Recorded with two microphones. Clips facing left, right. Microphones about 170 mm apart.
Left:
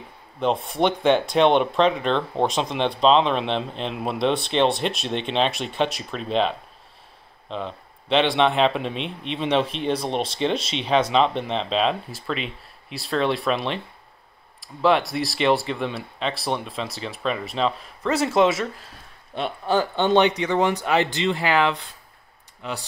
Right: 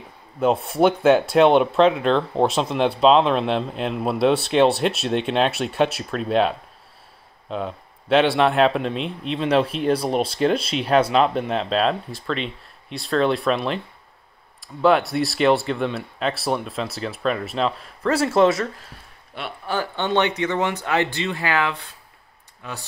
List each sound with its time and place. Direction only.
0.4 s speech: 5° right (ahead or behind)
18.4 s speech: 20° left (ahead or behind)